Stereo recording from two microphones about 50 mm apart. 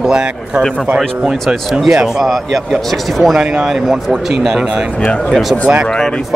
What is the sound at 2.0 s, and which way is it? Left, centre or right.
Speech, centre.